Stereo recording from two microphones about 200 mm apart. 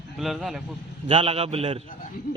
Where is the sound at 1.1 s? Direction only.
30° right (ahead or behind).